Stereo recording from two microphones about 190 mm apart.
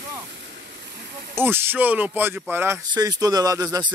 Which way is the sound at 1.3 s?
10° right (ahead or behind).